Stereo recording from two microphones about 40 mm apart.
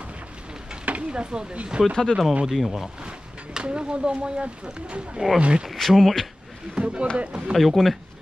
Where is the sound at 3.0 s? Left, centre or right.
Right.